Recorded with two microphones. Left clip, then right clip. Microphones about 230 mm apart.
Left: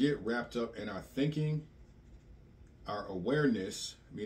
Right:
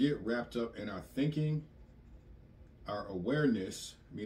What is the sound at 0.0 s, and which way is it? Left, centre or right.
Speech, centre.